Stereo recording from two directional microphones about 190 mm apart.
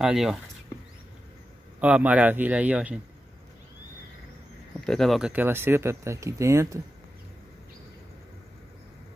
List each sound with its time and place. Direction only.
0.0 s speech: centre (ahead or behind)
1.8 s speech: 5° right (ahead or behind)
4.8 s speech: centre (ahead or behind); by 6.8 s 15° right (ahead or behind)